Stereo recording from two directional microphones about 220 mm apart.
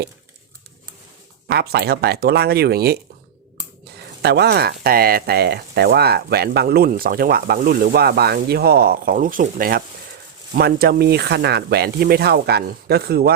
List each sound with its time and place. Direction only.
1.5 s speech: 45° right (ahead or behind)